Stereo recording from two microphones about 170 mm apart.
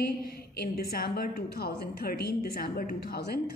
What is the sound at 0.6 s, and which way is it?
A woman's voice, 65° left (ahead or behind).